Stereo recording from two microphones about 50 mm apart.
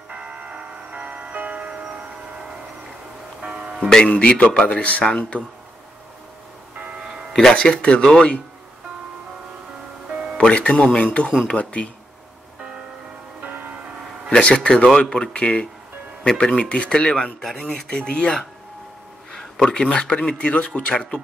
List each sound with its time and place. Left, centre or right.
0.1 s music: right
3.4 s music: centre
3.9 s speech: centre
5.0 s speech: centre
7.0 s music: centre
7.5 s speech: left
10.3 s speech: left
13.4 s music: right
14.4 s speech: centre
17.2 s speech: centre
17.8 s speech: centre
19.3 s speech: centre